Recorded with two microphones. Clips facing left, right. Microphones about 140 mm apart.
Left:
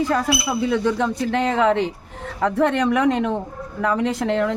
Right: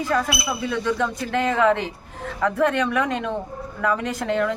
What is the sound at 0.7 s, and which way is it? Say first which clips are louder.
A woman's voice: left 2 dB; 30° left (ahead or behind).